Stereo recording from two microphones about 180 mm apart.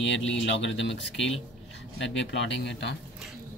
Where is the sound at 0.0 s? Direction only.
90° left.